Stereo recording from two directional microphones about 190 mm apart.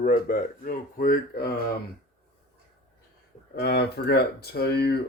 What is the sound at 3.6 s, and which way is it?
Speech, 60° left (ahead or behind).